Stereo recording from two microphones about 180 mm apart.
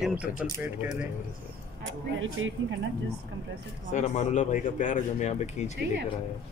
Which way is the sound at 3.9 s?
40° left (ahead or behind).